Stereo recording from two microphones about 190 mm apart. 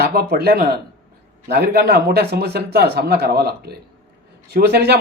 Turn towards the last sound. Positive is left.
turn(degrees=-60)  # may be behind; listen again after turning